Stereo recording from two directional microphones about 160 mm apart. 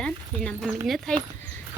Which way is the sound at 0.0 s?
5° left (ahead or behind).